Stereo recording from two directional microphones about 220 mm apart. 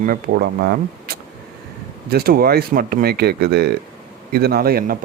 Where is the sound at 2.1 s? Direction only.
45° right (ahead or behind).